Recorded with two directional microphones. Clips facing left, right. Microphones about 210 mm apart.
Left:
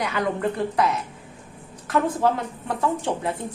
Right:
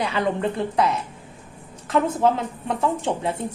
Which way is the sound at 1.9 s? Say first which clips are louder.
Right 2 dB; 25° right (ahead or behind).